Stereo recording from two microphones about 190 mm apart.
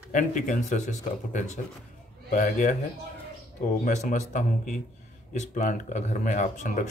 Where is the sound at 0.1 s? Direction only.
40° left (ahead or behind).